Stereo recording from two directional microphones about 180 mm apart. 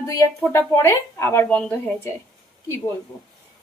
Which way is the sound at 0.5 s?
15° left (ahead or behind).